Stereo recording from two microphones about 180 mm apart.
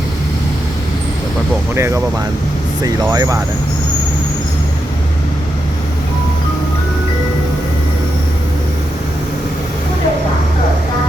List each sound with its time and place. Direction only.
2.8 s speech: 20° right (ahead or behind)